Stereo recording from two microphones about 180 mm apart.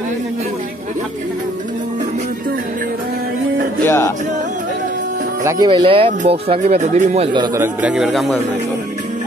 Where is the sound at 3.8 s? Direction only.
15° left (ahead or behind).